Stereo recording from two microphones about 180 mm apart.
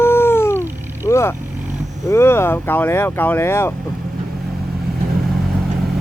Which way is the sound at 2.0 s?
15° left (ahead or behind).